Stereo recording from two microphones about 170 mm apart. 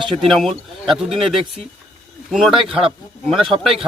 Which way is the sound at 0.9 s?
Centre (ahead or behind).